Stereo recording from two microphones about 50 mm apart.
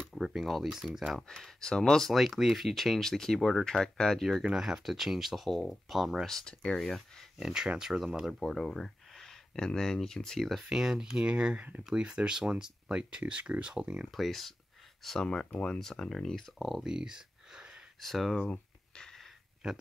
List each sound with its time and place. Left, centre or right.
0.2 s speech: centre
1.6 s speech: centre
2.1 s speech: centre
4.4 s speech: centre
6.3 s speech: centre
7.3 s speech: centre
8.4 s speech: centre
10.7 s speech: centre
14.1 s speech: centre
16.8 s a sound: centre
18.0 s speech: centre
18.4 s a sound: left